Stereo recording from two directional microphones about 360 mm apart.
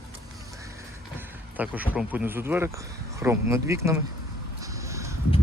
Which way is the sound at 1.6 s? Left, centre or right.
Centre.